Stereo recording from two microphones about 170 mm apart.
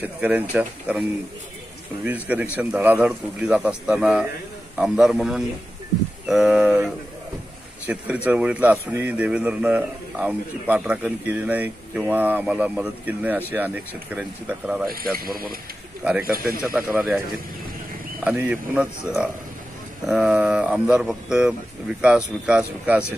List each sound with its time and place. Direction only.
0.0 s a man's voice: 10° right (ahead or behind)
2.0 s a man's voice: 10° right (ahead or behind)
15.1 s speech: 60° right (ahead or behind)
16.9 s speech: 5° right (ahead or behind)
18.2 s a man's voice: 5° right (ahead or behind)